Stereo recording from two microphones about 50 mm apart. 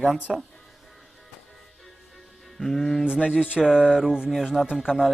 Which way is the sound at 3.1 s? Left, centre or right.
Left.